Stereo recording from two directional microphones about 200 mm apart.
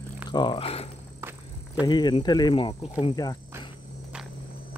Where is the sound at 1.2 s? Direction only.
10° right (ahead or behind).